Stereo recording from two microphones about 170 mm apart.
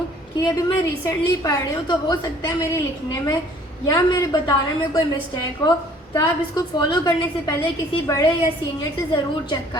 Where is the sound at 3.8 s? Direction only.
20° left (ahead or behind).